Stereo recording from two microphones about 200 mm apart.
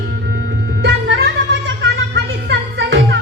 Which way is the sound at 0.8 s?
55° right (ahead or behind).